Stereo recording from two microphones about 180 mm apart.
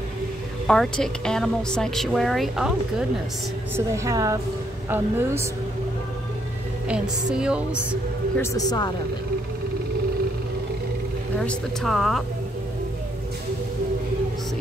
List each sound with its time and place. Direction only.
0.7 s a woman's voice: 5° left (ahead or behind)
3.7 s a woman's voice: 15° right (ahead or behind)
7.3 s a woman's voice: 5° right (ahead or behind)
8.4 s speech: 20° left (ahead or behind)
11.3 s a woman's voice: centre (ahead or behind)